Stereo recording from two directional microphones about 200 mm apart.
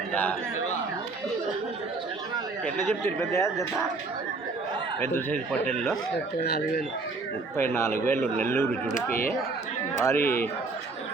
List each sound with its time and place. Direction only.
0.1 s speech: 10° left (ahead or behind)
3.2 s speech: 15° left (ahead or behind)
4.9 s speech: 10° left (ahead or behind)
6.4 s speech: 50° left (ahead or behind)
7.5 s speech: 10° left (ahead or behind)
10.0 s speech: 10° left (ahead or behind)